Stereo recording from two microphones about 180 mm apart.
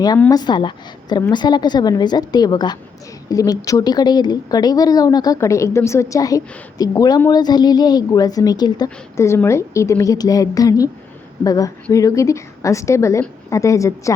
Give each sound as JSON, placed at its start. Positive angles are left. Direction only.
{"t": 0.3, "sound": "a woman's voice", "side_deg": 25}